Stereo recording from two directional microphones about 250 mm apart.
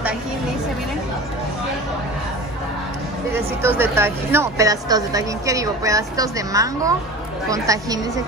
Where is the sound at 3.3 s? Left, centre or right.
Centre.